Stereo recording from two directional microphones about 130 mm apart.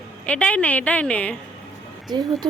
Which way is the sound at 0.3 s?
10° left (ahead or behind).